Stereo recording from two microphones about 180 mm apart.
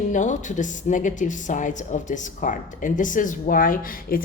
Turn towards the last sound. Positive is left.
turn(degrees=50)  # may be behind; listen again after turning